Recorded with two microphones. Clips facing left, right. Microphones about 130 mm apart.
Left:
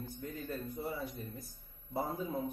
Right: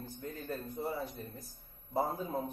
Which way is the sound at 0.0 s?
35° right (ahead or behind).